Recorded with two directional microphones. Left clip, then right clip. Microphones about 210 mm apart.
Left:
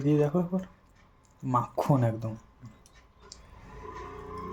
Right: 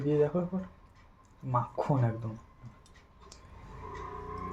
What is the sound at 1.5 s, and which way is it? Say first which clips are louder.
Speech: left 4 dB; 55° left (ahead or behind).